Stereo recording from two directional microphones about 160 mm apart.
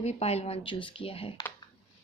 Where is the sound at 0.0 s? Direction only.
40° left (ahead or behind).